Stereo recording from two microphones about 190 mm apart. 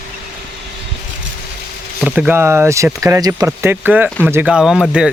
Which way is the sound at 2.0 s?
5° right (ahead or behind).